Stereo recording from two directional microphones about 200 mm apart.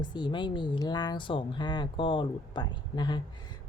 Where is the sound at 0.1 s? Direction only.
20° left (ahead or behind).